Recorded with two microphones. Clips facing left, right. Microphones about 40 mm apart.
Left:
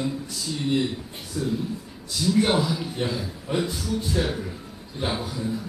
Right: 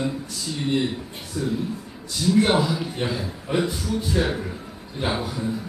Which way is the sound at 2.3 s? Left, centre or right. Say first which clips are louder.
Right 3 dB; centre.